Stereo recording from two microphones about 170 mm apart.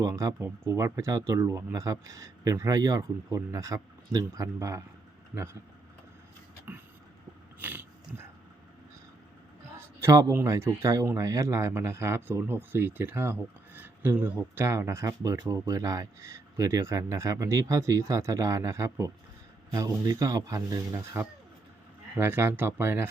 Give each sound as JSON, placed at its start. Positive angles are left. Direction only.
{"t": 0.0, "sound": "speech", "side_deg": -20}
{"t": 6.7, "sound": "vehicle", "side_deg": -10}
{"t": 7.6, "sound": "dog", "side_deg": -10}
{"t": 9.7, "sound": "speech", "side_deg": -15}